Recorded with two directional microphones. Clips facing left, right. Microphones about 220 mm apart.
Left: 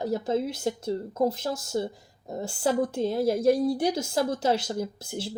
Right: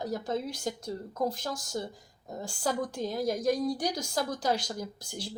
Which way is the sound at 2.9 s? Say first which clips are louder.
Left 6 dB; 25° left (ahead or behind).